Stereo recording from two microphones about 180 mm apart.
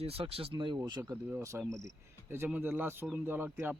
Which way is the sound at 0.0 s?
35° right (ahead or behind).